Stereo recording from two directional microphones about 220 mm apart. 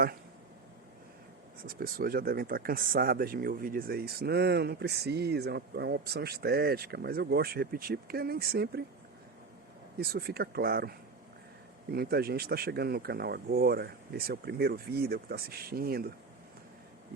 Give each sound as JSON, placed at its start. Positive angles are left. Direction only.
{"t": 1.6, "sound": "speech", "side_deg": -45}
{"t": 10.0, "sound": "speech", "side_deg": -45}